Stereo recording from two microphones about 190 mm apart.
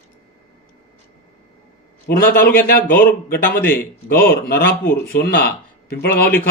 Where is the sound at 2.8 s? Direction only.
10° left (ahead or behind).